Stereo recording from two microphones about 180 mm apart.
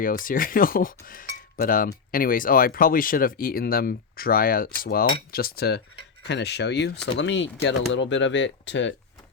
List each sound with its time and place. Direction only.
0.0 s speech: 50° left (ahead or behind)
5.3 s cutlery: 55° left (ahead or behind)
6.2 s speech: 70° left (ahead or behind); by 8.9 s 90° left